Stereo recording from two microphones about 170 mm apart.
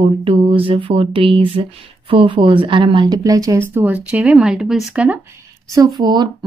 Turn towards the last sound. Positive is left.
turn(degrees=-25)  # may be behind; listen again after turning